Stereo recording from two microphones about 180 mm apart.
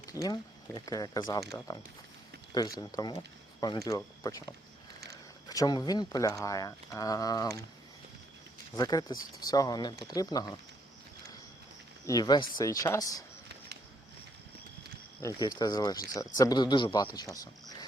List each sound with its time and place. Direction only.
0.0 s a sound: 20° left (ahead or behind)
0.9 s speech: 20° left (ahead or behind)
8.7 s speech: 20° left (ahead or behind)
12.0 s speech: 20° left (ahead or behind)
15.2 s speech: 20° left (ahead or behind)